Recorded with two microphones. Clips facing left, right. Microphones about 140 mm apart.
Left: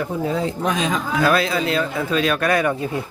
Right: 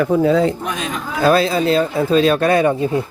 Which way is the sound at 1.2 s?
30° right (ahead or behind).